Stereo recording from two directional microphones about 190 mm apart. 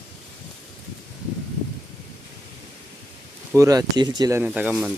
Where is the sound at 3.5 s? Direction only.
20° right (ahead or behind).